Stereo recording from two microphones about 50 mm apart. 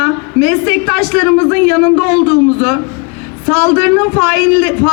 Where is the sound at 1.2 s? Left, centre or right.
Left.